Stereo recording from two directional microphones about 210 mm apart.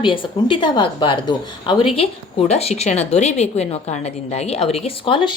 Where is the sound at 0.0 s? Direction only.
25° left (ahead or behind).